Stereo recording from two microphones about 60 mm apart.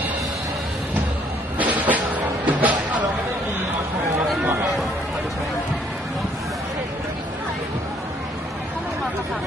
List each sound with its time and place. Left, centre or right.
1.6 s music: right